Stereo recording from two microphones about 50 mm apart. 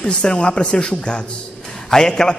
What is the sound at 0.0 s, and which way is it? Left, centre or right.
A man's voice, centre.